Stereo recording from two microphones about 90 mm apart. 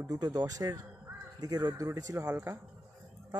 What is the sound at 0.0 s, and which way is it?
Speech, 45° right (ahead or behind).